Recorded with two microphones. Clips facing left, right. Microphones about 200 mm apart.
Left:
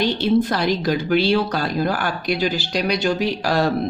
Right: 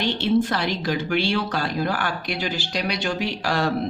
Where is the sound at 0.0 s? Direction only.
40° left (ahead or behind).